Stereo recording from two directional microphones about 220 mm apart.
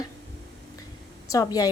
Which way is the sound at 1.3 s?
15° left (ahead or behind).